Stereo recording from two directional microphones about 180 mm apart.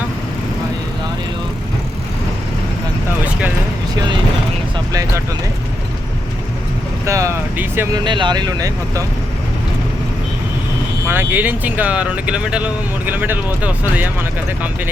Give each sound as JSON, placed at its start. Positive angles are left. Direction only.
{"t": 4.9, "sound": "a sound", "side_deg": -20}
{"t": 7.0, "sound": "speech", "side_deg": -15}
{"t": 7.9, "sound": "speech", "side_deg": -25}
{"t": 11.0, "sound": "speech", "side_deg": -10}